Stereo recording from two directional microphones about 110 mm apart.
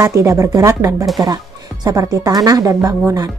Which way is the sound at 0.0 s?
25° right (ahead or behind).